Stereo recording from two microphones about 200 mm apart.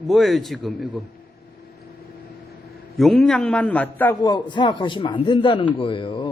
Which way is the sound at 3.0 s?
Centre (ahead or behind).